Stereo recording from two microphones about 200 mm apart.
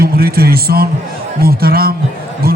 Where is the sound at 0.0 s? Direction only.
50° right (ahead or behind).